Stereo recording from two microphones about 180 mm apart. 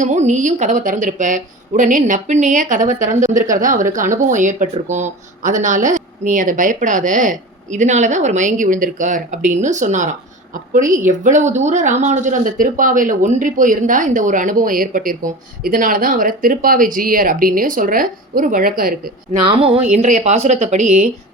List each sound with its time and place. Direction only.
0.0 s a woman's voice: 40° right (ahead or behind)
19.5 s speech: 30° right (ahead or behind)
19.9 s speech: 40° right (ahead or behind)